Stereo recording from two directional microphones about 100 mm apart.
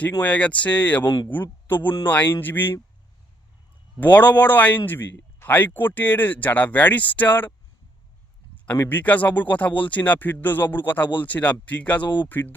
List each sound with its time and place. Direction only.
0.0 s a man's voice: 15° left (ahead or behind)
4.0 s speech: 15° left (ahead or behind)
8.9 s speech: 20° left (ahead or behind)
12.0 s speech: 50° left (ahead or behind)
12.3 s speech: 20° left (ahead or behind)